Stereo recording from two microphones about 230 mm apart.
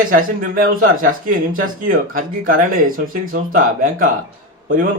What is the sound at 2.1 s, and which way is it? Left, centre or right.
A man's voice, right.